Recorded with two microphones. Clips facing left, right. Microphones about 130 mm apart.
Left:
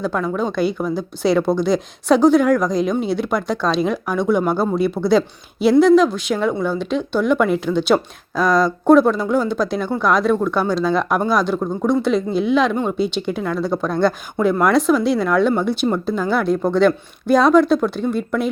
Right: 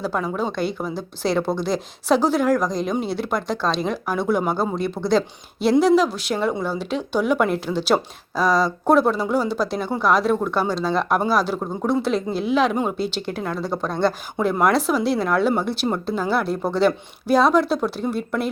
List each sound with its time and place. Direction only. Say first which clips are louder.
0.0 s speech: left 3 dB; 5° right (ahead or behind)